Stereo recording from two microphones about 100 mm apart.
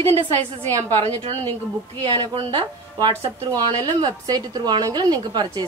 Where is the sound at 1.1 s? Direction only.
60° right (ahead or behind).